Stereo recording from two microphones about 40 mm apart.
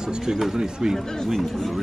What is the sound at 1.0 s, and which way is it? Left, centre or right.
Speech, centre.